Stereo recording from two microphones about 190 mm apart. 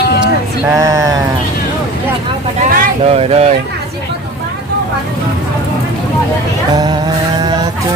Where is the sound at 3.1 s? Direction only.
30° right (ahead or behind).